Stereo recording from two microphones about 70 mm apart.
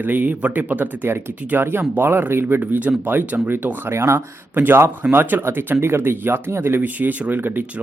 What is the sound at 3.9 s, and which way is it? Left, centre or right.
Speech, right.